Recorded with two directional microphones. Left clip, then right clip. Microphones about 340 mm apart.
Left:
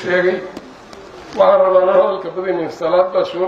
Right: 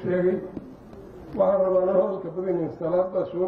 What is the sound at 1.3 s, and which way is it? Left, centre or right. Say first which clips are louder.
A man's voice: left 10 dB; centre.